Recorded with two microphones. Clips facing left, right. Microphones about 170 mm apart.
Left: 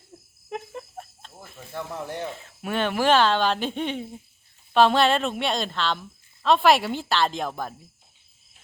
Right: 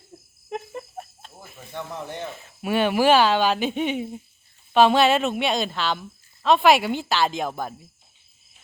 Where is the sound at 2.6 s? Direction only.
10° right (ahead or behind).